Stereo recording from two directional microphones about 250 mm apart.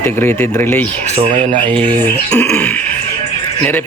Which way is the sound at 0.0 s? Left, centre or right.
Centre.